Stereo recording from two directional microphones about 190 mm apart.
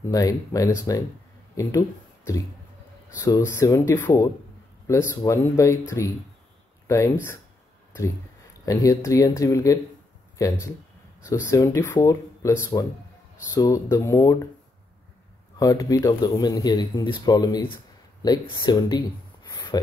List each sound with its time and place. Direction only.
0.0 s speech: 20° left (ahead or behind)
8.6 s speech: 20° left (ahead or behind)
15.6 s speech: 20° left (ahead or behind)